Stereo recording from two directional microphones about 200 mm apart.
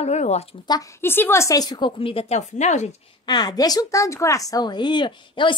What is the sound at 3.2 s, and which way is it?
A woman's voice, 20° left (ahead or behind).